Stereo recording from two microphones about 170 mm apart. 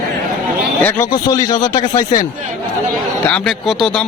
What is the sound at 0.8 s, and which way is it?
Speech, 15° left (ahead or behind).